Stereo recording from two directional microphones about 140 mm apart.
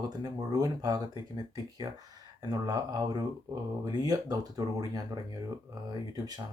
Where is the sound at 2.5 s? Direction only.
30° right (ahead or behind).